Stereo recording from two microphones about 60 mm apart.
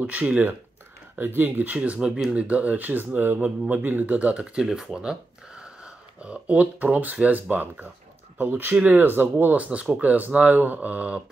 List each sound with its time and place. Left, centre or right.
0.0 s speech: right
6.2 s speech: right